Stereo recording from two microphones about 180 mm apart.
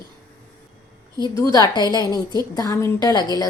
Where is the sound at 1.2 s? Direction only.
20° left (ahead or behind).